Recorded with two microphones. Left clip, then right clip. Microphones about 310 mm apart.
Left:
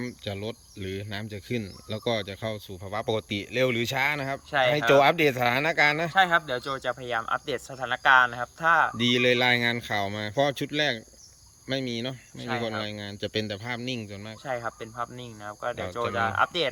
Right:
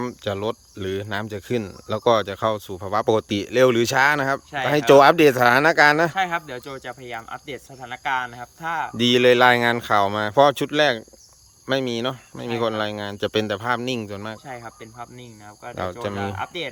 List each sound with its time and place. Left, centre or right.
0.0 s speech: centre
14.4 s cricket: centre